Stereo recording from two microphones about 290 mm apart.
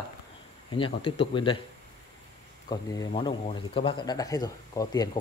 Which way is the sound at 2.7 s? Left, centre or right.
Centre.